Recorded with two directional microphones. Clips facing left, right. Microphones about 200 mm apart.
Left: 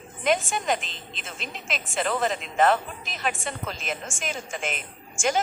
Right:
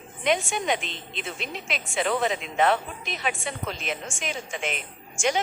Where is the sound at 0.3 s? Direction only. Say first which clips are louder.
Even; centre (ahead or behind).